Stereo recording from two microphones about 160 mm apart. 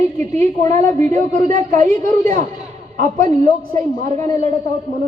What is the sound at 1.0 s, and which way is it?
A woman's voice, 50° right (ahead or behind).